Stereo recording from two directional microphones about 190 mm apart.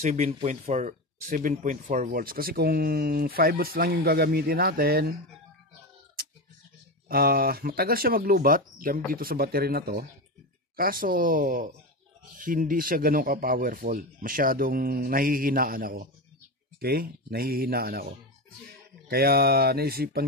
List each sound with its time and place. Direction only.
0.0 s speech: 35° right (ahead or behind); by 5.1 s 50° right (ahead or behind)
7.1 s speech: 50° right (ahead or behind)
19.0 s speech: 55° right (ahead or behind)